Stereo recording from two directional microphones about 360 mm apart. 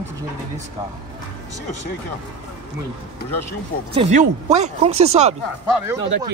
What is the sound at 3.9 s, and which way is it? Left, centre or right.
Speech, centre.